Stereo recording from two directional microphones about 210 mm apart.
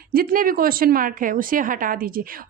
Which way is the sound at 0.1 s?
45° right (ahead or behind).